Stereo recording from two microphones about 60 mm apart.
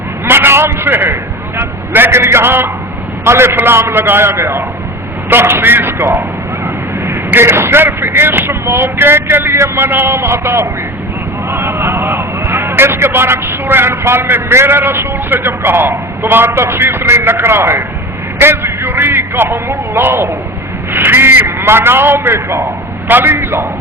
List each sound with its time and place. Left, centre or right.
0.3 s a man's voice: right